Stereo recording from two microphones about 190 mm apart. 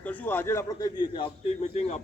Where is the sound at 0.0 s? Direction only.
10° left (ahead or behind).